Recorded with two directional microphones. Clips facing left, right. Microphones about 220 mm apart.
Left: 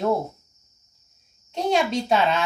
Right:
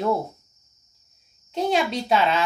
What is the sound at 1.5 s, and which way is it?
Speech, centre (ahead or behind).